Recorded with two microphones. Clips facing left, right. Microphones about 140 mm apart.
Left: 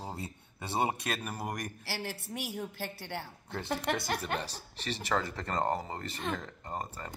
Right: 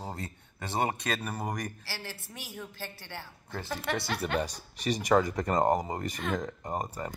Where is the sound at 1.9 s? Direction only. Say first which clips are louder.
Left 4 dB; 60° left (ahead or behind).